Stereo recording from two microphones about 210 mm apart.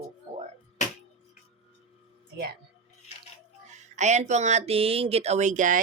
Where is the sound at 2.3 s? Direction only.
50° right (ahead or behind).